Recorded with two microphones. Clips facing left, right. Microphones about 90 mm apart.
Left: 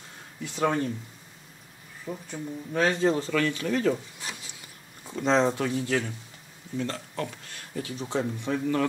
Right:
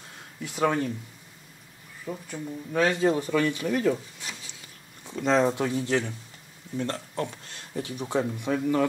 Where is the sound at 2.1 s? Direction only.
15° right (ahead or behind).